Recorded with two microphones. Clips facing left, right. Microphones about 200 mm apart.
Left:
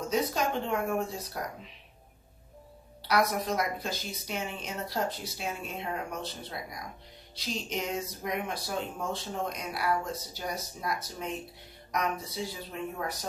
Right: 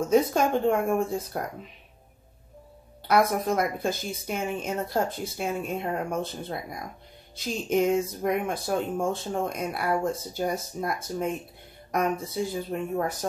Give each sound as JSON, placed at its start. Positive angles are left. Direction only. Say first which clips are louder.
{"t": 0.1, "sound": "speech", "louder": "right 7 dB", "side_deg": -50}
{"t": 3.1, "sound": "speech", "louder": "right 5 dB", "side_deg": -50}